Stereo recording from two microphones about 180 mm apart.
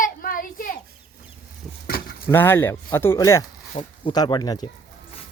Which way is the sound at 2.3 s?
15° left (ahead or behind).